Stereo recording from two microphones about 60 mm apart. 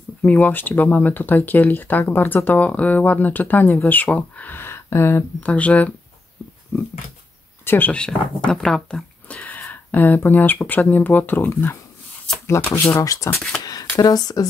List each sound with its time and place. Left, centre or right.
0.2 s speech: left
4.6 s a sound: left
5.4 s speech: left
6.7 s speech: left
7.9 s speech: centre
9.3 s speech: left
12.8 s speech: left
13.7 s speech: left